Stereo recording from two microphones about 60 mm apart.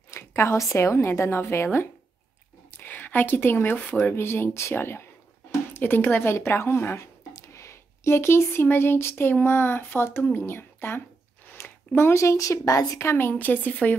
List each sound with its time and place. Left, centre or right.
0.2 s a sound: left
0.6 s a woman's voice: left
2.8 s a woman's voice: left
7.3 s speech: left
13.0 s a woman's voice: left